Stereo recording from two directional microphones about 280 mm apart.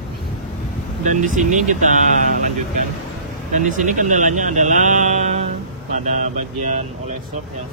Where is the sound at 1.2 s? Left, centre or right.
Right.